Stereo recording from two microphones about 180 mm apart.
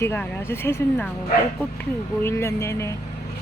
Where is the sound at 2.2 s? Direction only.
15° left (ahead or behind).